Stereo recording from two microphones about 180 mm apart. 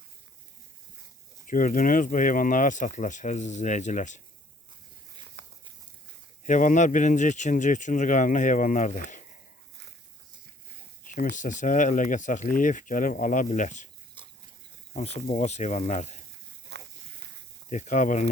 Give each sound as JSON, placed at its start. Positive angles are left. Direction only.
{"t": 1.5, "sound": "speech", "side_deg": 50}
{"t": 5.4, "sound": "a sound", "side_deg": -70}
{"t": 6.4, "sound": "speech", "side_deg": 45}
{"t": 11.1, "sound": "speech", "side_deg": 45}
{"t": 14.2, "sound": "pig", "side_deg": -25}
{"t": 14.9, "sound": "speech", "side_deg": 35}
{"t": 16.7, "sound": "walk", "side_deg": -70}
{"t": 17.7, "sound": "speech", "side_deg": 45}